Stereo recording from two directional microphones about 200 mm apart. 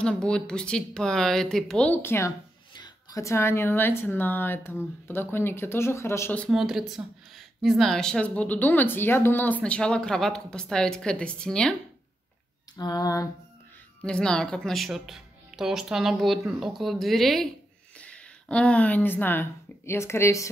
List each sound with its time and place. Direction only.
0.0 s speech: 5° left (ahead or behind)
12.7 s speech: 20° left (ahead or behind)
14.0 s speech: 5° left (ahead or behind)